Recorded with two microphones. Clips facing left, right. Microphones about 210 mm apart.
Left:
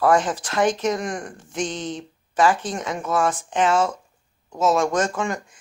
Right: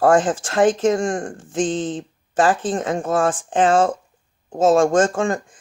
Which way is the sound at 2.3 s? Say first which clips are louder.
Right 2 dB; 50° right (ahead or behind).